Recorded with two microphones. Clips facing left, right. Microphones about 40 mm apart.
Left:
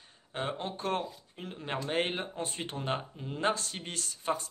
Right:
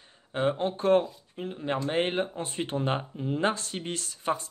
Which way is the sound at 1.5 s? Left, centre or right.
Centre.